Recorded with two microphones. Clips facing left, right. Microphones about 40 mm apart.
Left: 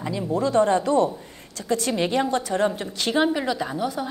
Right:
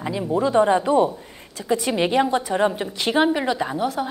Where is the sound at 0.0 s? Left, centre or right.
Centre.